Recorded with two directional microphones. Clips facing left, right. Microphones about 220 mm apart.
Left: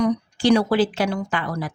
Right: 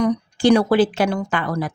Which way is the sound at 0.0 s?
50° right (ahead or behind).